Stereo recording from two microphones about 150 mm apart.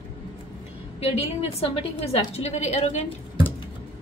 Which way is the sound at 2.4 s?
50° left (ahead or behind).